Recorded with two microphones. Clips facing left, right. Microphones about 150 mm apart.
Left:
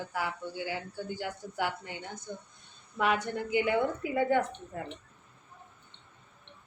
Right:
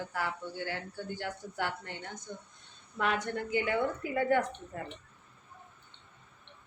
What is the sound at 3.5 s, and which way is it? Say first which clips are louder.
Speech: left 3 dB; 15° left (ahead or behind).